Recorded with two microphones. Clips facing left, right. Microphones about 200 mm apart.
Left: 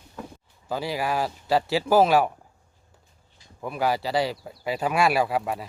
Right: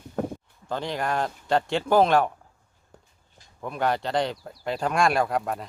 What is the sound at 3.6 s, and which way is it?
Speech, 5° left (ahead or behind).